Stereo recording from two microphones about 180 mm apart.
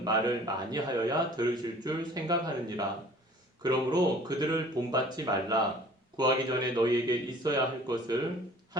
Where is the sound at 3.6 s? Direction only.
20° right (ahead or behind).